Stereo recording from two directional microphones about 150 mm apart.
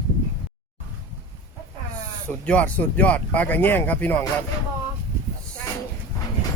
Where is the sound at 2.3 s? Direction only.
10° left (ahead or behind).